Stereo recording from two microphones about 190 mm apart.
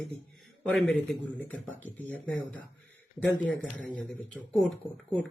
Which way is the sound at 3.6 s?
5° left (ahead or behind).